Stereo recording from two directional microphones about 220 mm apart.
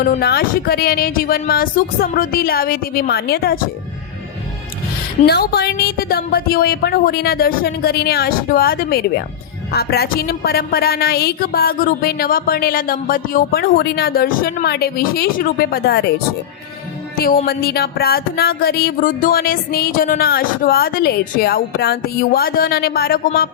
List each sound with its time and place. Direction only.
0.2 s a woman's voice: 45° left (ahead or behind)
5.2 s a woman's voice: 45° left (ahead or behind)